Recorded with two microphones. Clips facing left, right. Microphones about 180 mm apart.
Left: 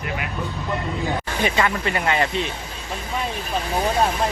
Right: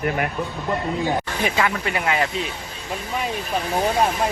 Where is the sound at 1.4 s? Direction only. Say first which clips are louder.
Left 4 dB; 5° right (ahead or behind).